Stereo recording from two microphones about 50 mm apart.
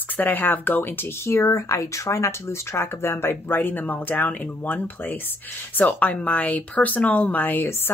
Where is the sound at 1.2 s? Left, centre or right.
Left.